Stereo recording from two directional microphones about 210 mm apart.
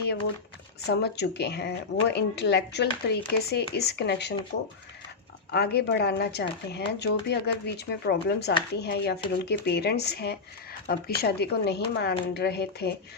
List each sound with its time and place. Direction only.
0.9 s speech: 50° left (ahead or behind)
5.5 s speech: 50° left (ahead or behind)